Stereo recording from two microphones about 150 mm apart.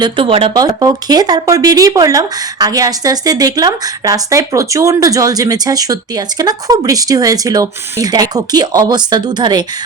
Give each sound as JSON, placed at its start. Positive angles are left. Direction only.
{"t": 0.0, "sound": "speech", "side_deg": -35}
{"t": 0.5, "sound": "speech", "side_deg": -25}